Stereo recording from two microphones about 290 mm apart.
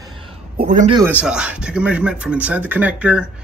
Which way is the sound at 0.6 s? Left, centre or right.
Right.